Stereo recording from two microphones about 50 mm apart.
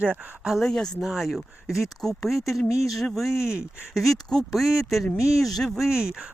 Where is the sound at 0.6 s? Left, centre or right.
Centre.